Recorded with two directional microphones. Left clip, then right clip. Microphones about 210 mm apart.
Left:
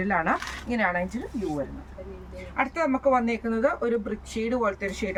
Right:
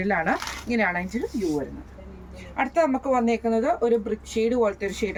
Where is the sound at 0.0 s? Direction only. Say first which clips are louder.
Right 1 dB; 20° left (ahead or behind).